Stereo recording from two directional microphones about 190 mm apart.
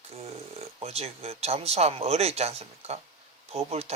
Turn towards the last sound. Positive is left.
turn(degrees=-35)  # may be behind; listen again after turning